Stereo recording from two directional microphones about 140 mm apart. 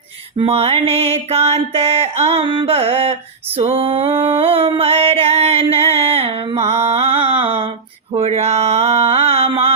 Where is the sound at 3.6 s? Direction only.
45° right (ahead or behind).